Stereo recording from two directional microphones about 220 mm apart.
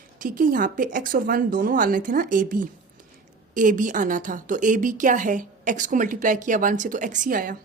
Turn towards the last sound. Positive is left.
turn(degrees=-40)  # may be behind; listen again after turning